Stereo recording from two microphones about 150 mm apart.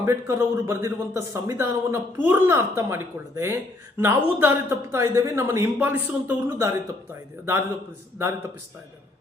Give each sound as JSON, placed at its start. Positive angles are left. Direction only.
{"t": 0.0, "sound": "a man's voice", "side_deg": -20}